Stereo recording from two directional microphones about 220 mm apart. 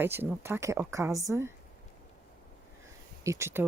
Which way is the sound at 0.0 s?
10° right (ahead or behind).